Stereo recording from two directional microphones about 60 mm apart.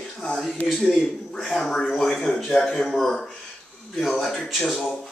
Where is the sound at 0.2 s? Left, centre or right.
Centre.